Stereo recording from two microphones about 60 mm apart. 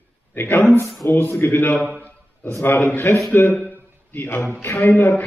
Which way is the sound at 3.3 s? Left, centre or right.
Left.